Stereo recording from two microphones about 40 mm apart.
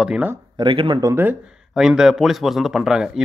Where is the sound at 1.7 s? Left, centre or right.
Centre.